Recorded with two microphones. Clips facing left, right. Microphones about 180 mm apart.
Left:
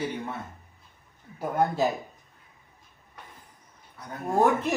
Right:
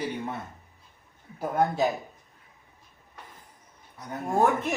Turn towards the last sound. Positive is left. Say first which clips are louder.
# left 1 dB
turn(degrees=0)  # may be behind; listen again after turning